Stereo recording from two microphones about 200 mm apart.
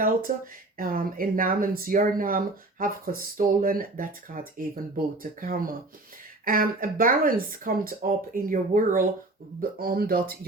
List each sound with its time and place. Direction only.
0.0 s speech: 45° right (ahead or behind)